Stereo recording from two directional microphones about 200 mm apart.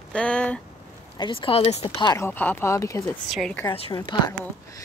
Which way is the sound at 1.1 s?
25° left (ahead or behind).